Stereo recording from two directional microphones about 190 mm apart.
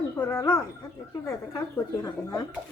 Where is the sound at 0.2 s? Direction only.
15° left (ahead or behind).